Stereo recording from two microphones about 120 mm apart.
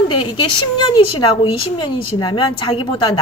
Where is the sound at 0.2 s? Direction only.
45° left (ahead or behind).